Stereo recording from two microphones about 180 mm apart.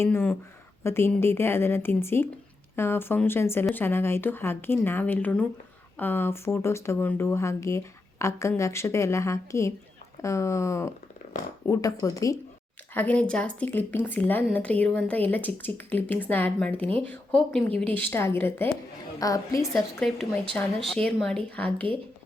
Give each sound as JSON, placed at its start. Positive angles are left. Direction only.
{"t": 0.0, "sound": "speech", "side_deg": 10}
{"t": 19.7, "sound": "speech", "side_deg": 0}